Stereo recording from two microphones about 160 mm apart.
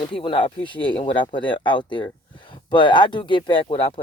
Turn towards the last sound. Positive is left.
turn(degrees=40)  # may be behind; listen again after turning